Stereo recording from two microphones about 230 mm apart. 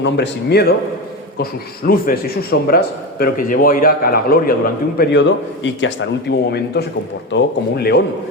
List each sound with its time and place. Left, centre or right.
0.0 s a man's voice: left
1.9 s speech: left
4.9 s a man's voice: left